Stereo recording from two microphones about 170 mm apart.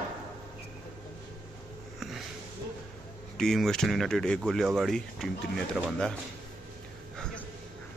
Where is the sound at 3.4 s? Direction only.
5° left (ahead or behind).